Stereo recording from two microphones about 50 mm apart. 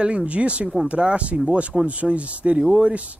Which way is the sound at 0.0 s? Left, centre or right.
Right.